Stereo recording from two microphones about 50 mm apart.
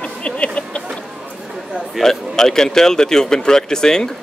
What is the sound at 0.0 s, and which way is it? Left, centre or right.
Music, left.